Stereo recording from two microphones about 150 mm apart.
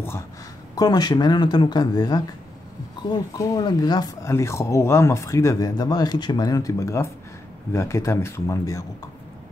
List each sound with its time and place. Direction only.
0.7 s speech: 25° left (ahead or behind)